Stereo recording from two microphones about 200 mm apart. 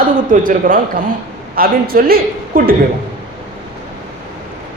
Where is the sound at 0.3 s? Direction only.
45° right (ahead or behind).